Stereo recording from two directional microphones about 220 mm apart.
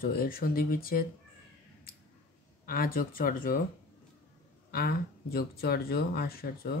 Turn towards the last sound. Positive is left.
turn(degrees=45)  # may be behind; listen again after turning